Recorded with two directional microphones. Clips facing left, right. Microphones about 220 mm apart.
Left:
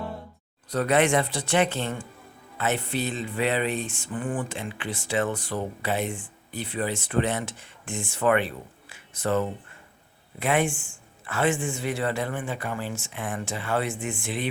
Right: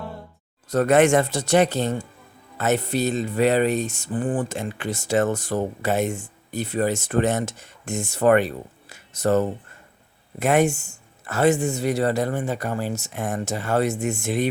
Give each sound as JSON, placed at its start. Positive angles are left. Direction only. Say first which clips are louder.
{"t": 0.7, "sound": "music", "louder": "right 5 dB", "side_deg": -45}
{"t": 10.4, "sound": "a man's voice", "louder": "right 5 dB", "side_deg": -45}